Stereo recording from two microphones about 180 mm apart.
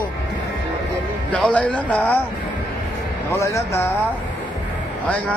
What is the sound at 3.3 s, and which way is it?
Speech, 15° left (ahead or behind).